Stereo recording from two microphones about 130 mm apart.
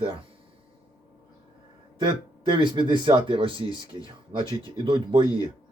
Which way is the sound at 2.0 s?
35° right (ahead or behind).